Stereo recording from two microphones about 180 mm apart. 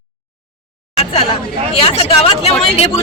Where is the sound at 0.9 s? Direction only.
35° left (ahead or behind).